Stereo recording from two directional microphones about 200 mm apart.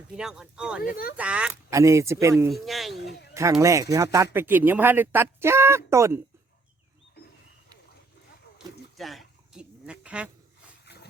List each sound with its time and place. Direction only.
0.2 s speech: 5° right (ahead or behind)
2.5 s speech: centre (ahead or behind)
3.0 s speech: 55° left (ahead or behind)
3.6 s speech: 15° right (ahead or behind)
8.6 s a sound: 20° right (ahead or behind)
9.0 s a sound: centre (ahead or behind)